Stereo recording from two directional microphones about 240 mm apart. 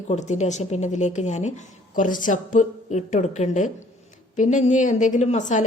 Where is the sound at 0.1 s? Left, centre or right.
Left.